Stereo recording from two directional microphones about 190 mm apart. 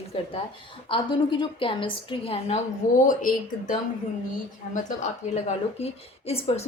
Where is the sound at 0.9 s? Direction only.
25° left (ahead or behind).